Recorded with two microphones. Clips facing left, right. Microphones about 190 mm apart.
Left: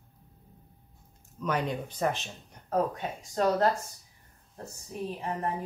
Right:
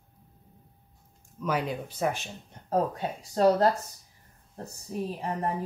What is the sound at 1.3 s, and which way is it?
Speech, 5° right (ahead or behind).